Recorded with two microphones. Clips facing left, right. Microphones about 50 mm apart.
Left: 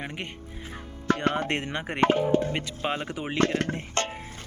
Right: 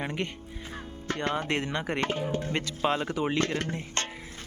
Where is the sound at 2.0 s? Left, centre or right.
Left.